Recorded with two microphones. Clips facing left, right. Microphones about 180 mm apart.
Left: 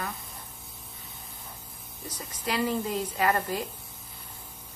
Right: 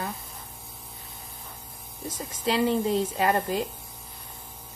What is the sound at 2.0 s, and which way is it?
A woman's voice, 25° right (ahead or behind).